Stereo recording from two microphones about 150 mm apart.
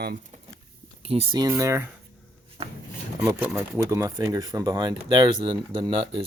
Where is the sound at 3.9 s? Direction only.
25° right (ahead or behind).